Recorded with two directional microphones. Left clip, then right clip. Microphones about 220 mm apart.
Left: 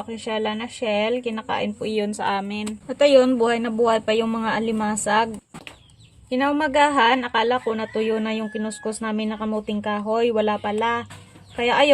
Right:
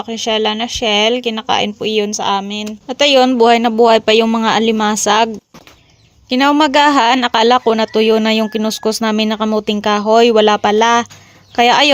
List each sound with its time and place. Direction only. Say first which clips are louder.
0.0 s a man's voice: right 10 dB; 35° right (ahead or behind)
2.8 s a man's voice: right 5 dB; 35° right (ahead or behind)